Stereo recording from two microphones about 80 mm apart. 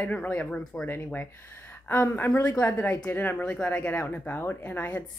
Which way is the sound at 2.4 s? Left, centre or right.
Centre.